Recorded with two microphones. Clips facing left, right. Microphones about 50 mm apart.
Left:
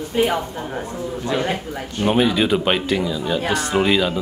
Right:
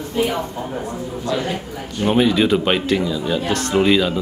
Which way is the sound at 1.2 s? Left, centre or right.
Left.